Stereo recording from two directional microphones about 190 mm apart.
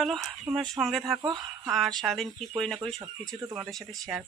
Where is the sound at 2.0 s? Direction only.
Centre (ahead or behind).